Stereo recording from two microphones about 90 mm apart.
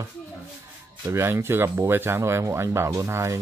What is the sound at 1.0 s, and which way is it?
Speech, 30° right (ahead or behind).